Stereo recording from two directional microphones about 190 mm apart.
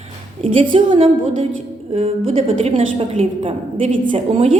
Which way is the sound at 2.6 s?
30° right (ahead or behind).